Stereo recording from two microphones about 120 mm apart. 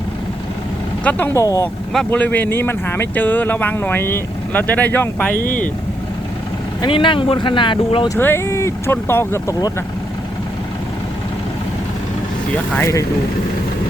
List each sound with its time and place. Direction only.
1.0 s speech: 20° left (ahead or behind)
2.0 s speech: 15° left (ahead or behind)
6.8 s speech: 45° left (ahead or behind)
8.2 s speech: 20° left (ahead or behind)
12.7 s speech: 20° left (ahead or behind)